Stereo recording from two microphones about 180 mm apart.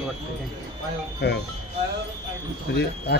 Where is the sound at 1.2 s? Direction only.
65° left (ahead or behind).